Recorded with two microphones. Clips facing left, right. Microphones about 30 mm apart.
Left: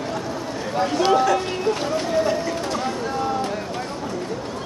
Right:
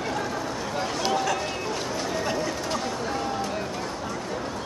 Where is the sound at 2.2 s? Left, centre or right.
Centre.